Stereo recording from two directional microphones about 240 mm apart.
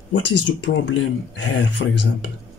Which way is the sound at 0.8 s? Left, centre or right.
Left.